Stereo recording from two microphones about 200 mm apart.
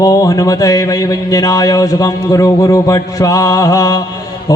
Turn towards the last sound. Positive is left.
turn(degrees=20)  # may be behind; listen again after turning